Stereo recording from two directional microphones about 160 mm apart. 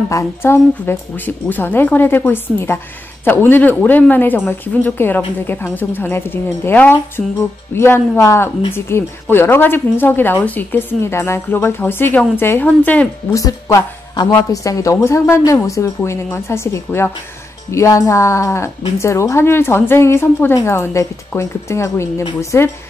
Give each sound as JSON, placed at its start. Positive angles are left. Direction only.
{"t": 0.1, "sound": "a woman's voice", "side_deg": 15}
{"t": 13.3, "sound": "a woman's voice", "side_deg": 20}